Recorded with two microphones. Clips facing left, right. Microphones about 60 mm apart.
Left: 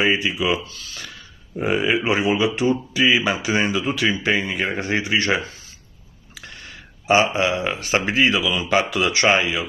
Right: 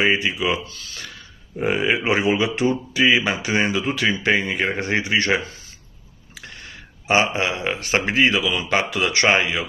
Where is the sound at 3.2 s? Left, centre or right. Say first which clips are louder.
Left 1 dB; right.